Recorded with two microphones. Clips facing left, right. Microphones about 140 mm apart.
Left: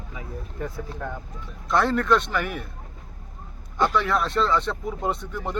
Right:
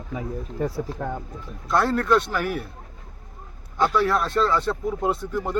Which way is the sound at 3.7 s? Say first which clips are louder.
Right 2 dB; 5° right (ahead or behind).